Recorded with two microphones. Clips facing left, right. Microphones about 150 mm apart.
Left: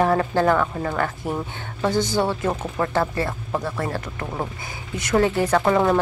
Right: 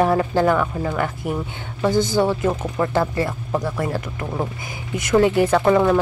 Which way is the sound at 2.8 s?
10° right (ahead or behind).